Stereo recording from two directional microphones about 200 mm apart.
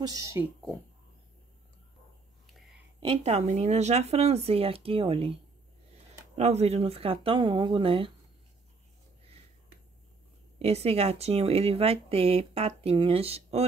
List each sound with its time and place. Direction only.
0.0 s speech: 20° right (ahead or behind)
2.4 s whispering: centre (ahead or behind)
3.0 s speech: 30° right (ahead or behind)
10.6 s speech: 30° right (ahead or behind)